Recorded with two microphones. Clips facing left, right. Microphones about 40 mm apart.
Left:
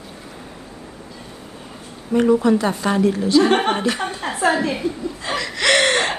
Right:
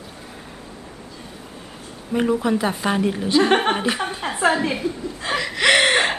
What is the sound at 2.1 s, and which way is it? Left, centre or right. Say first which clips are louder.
A woman's voice: left 4 dB; centre.